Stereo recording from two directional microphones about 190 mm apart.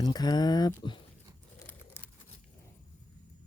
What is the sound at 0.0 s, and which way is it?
Speech, 20° left (ahead or behind).